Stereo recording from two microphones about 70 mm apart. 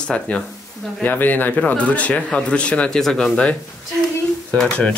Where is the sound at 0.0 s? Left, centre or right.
Centre.